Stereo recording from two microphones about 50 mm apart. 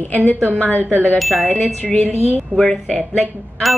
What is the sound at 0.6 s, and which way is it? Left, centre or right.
Speech, left.